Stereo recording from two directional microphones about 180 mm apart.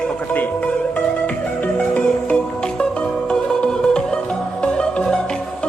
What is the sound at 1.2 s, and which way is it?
Music, 5° left (ahead or behind).